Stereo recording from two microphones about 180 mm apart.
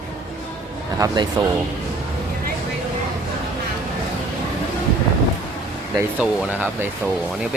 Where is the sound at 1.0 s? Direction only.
25° right (ahead or behind).